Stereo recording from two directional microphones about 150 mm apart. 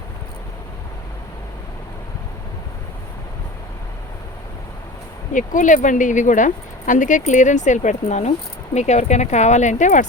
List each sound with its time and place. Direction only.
5.3 s speech: 60° left (ahead or behind)